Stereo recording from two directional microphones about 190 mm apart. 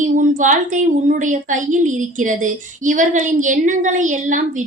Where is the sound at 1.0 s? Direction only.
45° right (ahead or behind).